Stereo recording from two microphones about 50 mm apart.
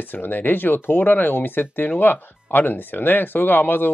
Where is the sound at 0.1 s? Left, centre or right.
Left.